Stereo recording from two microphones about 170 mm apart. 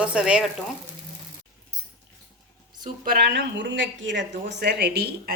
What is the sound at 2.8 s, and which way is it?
A woman's voice, 70° right (ahead or behind).